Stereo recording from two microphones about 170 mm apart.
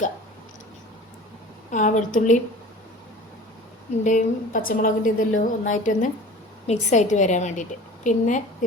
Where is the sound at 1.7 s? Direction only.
50° left (ahead or behind).